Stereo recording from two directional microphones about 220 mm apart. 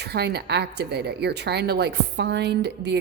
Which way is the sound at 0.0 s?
45° right (ahead or behind).